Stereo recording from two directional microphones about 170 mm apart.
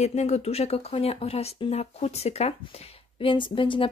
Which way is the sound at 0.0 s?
40° left (ahead or behind).